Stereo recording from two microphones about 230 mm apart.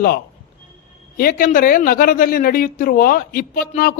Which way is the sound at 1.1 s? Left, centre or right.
Left.